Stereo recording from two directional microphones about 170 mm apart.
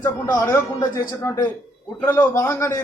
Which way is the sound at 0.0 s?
20° left (ahead or behind).